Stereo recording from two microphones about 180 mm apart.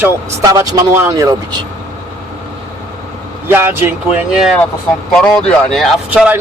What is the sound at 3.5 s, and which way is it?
Speech, 10° right (ahead or behind).